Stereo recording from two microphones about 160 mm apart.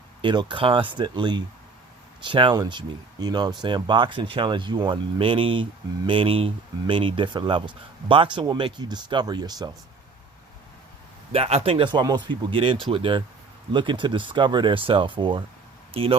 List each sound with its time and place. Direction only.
0.2 s speech: 30° right (ahead or behind)
11.3 s speech: 40° right (ahead or behind)